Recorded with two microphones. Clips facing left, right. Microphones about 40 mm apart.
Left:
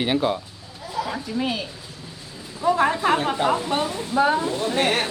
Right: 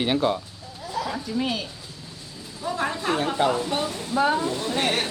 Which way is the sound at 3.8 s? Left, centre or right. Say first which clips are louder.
Left 2 dB; centre.